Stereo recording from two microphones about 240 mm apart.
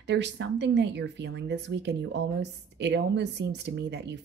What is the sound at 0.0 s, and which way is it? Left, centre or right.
Speech, right.